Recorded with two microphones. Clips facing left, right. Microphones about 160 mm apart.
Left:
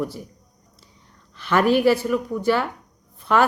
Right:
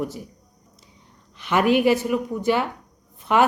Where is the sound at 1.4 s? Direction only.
15° right (ahead or behind).